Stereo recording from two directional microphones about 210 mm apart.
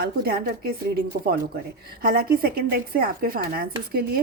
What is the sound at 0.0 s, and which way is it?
Speech, 50° right (ahead or behind).